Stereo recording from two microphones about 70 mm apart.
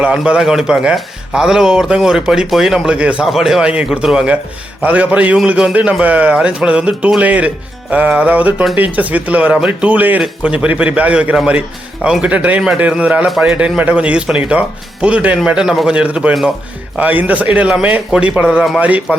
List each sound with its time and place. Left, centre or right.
0.3 s a man's voice: centre
3.2 s a man's voice: centre
4.8 s a man's voice: right; by 16.0 s centre
16.0 s a man's voice: centre